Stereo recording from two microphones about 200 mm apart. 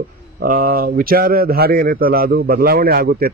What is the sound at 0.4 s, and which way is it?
Speech, 45° right (ahead or behind).